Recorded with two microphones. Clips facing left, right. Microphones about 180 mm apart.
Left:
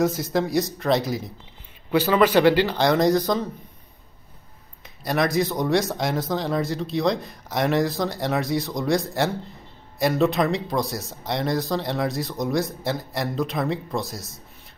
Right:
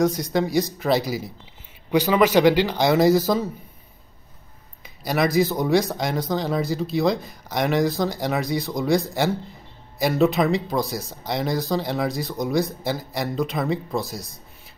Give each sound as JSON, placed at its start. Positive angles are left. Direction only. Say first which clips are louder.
{"t": 0.0, "sound": "speech", "louder": "right 1 dB", "side_deg": 5}
{"t": 1.9, "sound": "speech", "louder": "even", "side_deg": -15}
{"t": 4.8, "sound": "speech", "louder": "right 1 dB", "side_deg": 0}